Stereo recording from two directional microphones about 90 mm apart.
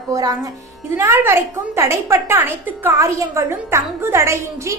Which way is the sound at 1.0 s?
30° right (ahead or behind).